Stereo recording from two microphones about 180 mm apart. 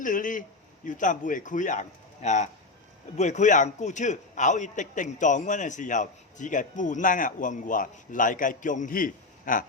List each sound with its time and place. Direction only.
0.0 s a man's voice: 45° left (ahead or behind)